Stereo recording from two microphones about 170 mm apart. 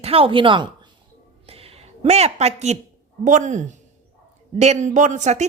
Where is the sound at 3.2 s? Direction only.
45° right (ahead or behind).